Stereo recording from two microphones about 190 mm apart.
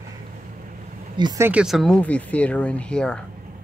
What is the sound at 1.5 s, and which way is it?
Speech, 5° right (ahead or behind).